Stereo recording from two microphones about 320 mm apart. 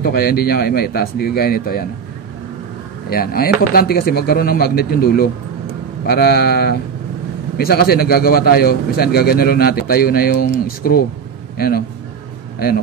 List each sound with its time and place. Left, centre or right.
0.0 s speech: left
3.1 s a man's voice: left